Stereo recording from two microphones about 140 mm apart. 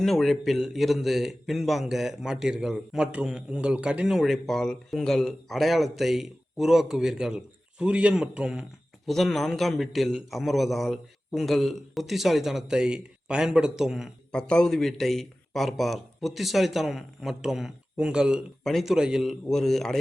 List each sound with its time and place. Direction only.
0.0 s a man's voice: centre (ahead or behind)